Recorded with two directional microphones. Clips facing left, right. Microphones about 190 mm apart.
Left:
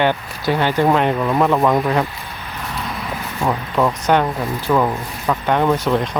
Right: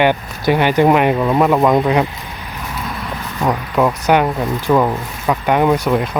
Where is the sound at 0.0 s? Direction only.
15° right (ahead or behind).